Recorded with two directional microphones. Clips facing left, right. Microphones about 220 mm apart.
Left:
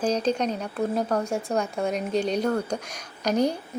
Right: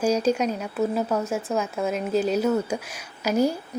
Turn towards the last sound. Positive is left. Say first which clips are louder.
# right 1 dB
turn(degrees=-5)  # may be behind; listen again after turning